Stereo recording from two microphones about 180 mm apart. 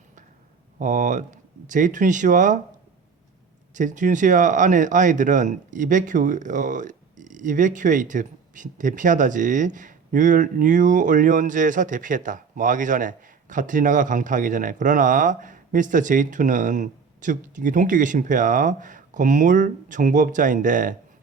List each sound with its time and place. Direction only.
0.8 s speech: 45° right (ahead or behind)
3.8 s speech: 45° right (ahead or behind)